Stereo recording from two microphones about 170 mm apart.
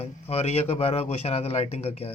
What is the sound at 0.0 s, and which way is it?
Speech, 35° left (ahead or behind).